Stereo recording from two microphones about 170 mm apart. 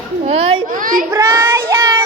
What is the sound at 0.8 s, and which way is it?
Speech, 55° right (ahead or behind).